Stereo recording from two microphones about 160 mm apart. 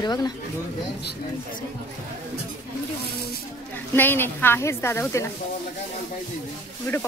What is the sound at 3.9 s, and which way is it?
Speech, 10° left (ahead or behind).